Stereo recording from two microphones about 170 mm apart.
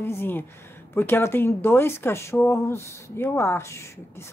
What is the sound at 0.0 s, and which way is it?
Speech, 15° left (ahead or behind).